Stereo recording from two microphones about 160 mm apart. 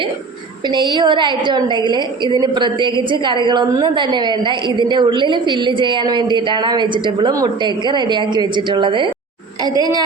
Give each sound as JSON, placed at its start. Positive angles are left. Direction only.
{"t": 0.7, "sound": "a woman's voice", "side_deg": -30}